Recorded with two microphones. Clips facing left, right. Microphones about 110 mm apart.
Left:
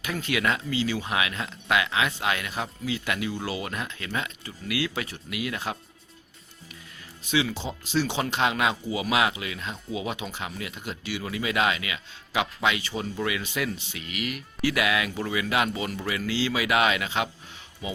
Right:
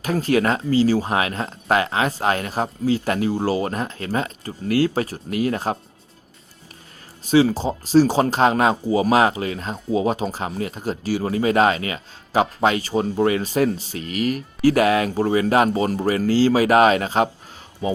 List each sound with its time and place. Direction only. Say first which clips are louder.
0.0 s speech: right 8 dB; 40° right (ahead or behind)
7.3 s speech: right 10 dB; 40° right (ahead or behind)